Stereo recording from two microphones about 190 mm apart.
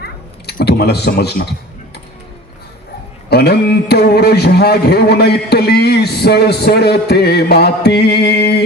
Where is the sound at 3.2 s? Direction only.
55° left (ahead or behind).